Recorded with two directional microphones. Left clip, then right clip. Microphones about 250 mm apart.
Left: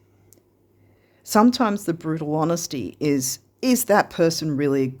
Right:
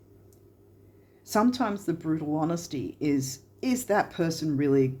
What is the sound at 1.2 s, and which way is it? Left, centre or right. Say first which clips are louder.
A woman's voice: left 7 dB; left.